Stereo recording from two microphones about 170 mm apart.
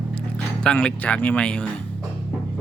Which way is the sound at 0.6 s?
5° left (ahead or behind).